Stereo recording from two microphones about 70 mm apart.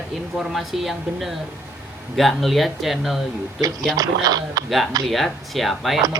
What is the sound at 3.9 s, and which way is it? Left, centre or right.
Speech, right.